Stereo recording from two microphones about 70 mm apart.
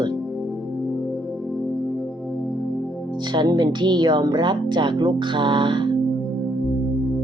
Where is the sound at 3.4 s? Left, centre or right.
Right.